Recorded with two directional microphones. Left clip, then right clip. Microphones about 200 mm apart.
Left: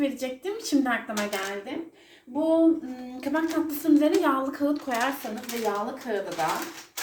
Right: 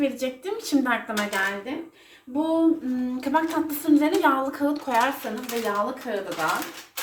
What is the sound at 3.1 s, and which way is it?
A woman's voice, 15° right (ahead or behind).